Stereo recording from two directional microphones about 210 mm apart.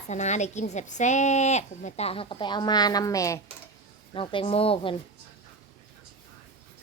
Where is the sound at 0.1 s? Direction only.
35° left (ahead or behind).